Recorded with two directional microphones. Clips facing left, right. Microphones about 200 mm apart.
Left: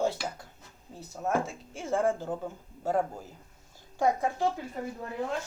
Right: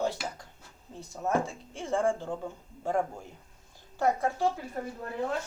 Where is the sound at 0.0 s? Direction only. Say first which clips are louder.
Left 2 dB; 5° left (ahead or behind).